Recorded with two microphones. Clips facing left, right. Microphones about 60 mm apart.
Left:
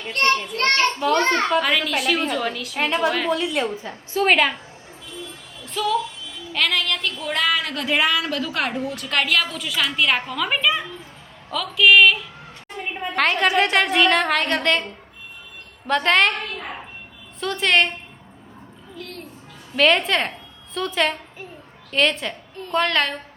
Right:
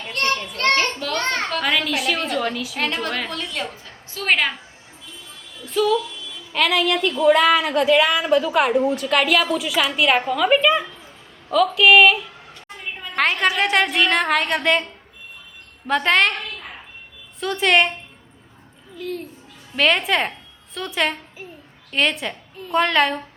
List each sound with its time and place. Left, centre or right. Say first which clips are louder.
0.6 s a woman's voice: even; centre
3.7 s a woman's voice: left 9 dB; left
4.3 s a woman's voice: left 1 dB; centre
5.6 s a woman's voice: right 3 dB; centre
7.9 s a woman's voice: right 3 dB; centre
8.1 s a woman's voice: right 6 dB; centre
15.9 s a woman's voice: even; centre
17.4 s a woman's voice: right 2 dB; centre
18.9 s a woman's voice: right 7 dB; centre